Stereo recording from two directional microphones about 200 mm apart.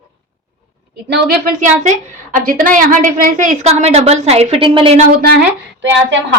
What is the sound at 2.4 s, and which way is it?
A woman's voice, 45° right (ahead or behind).